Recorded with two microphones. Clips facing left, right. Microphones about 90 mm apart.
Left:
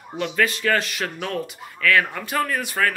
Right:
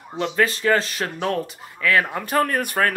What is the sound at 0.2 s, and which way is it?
Speech, 30° right (ahead or behind).